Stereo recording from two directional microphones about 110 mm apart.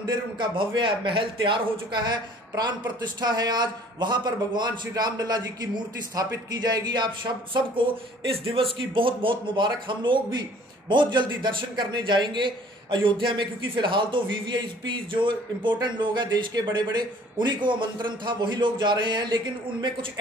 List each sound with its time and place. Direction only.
0.0 s a man's voice: 45° right (ahead or behind)
7.5 s speech: 50° right (ahead or behind)